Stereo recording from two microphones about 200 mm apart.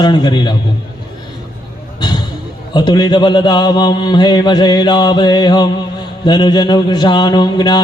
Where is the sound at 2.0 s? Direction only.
20° left (ahead or behind).